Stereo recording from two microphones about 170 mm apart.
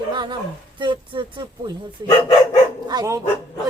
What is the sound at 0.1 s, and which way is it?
Roaring cats, 25° right (ahead or behind).